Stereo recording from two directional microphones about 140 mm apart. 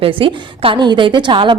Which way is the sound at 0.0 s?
40° right (ahead or behind).